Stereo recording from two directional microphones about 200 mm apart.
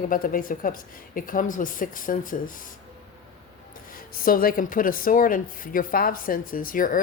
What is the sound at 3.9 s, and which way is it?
Speech, 45° left (ahead or behind).